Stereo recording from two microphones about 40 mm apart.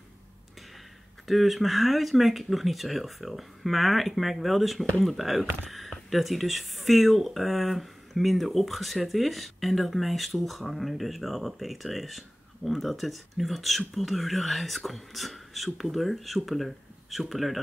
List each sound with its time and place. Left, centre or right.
1.2 s speech: centre